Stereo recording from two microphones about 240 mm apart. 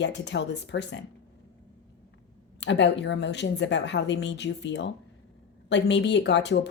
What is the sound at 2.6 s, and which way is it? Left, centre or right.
Speech, left.